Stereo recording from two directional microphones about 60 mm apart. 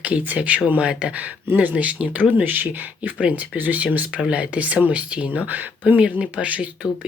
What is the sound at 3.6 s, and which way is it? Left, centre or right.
Speech, right.